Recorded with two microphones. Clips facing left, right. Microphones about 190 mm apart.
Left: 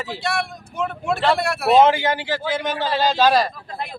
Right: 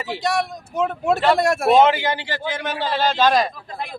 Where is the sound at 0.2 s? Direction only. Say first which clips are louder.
Right 5 dB; 40° right (ahead or behind).